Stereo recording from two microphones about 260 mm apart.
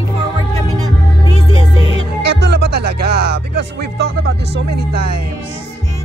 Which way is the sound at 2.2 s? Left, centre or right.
Right.